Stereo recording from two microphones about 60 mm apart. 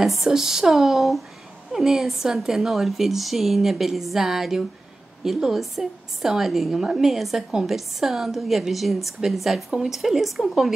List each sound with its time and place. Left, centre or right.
0.0 s a woman's voice: centre